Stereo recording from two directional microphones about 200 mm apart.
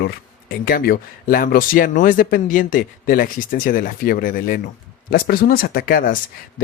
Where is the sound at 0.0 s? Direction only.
45° left (ahead or behind).